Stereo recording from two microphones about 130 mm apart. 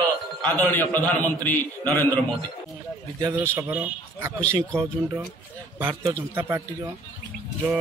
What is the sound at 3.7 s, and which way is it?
Speech, 10° right (ahead or behind).